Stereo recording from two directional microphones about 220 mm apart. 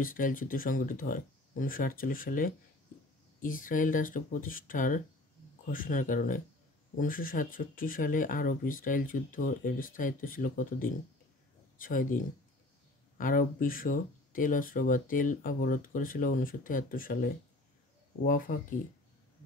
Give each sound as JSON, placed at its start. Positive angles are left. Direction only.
{"t": 0.0, "sound": "speech", "side_deg": 40}
{"t": 13.2, "sound": "speech", "side_deg": 40}